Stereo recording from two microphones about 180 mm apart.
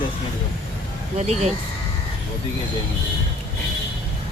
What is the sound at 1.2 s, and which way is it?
Speech, 35° right (ahead or behind).